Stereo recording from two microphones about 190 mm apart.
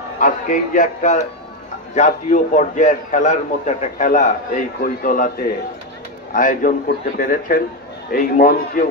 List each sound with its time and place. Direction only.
0.2 s a man's voice: 40° left (ahead or behind)
6.3 s a man's voice: 45° left (ahead or behind)